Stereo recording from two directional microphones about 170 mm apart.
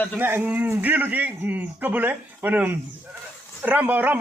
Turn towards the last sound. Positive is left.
turn(degrees=-10)  # may be behind; listen again after turning